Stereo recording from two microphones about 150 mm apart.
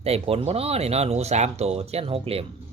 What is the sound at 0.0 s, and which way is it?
Speech, 40° right (ahead or behind).